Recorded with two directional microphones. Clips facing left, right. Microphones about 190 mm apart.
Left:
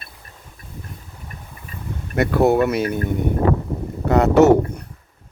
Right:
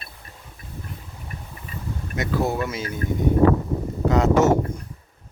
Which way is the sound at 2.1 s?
60° left (ahead or behind).